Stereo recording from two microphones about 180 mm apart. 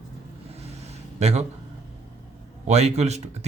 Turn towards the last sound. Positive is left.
turn(degrees=-40)  # may be behind; listen again after turning